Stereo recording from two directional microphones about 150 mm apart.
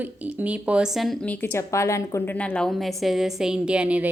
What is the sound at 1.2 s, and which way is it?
A woman's voice, 10° left (ahead or behind).